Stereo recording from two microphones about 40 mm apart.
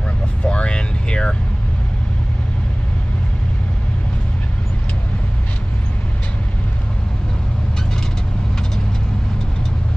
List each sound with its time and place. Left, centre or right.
0.5 s vehicle: left